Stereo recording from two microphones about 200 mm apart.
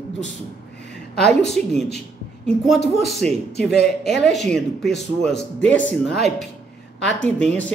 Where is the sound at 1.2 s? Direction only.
55° left (ahead or behind).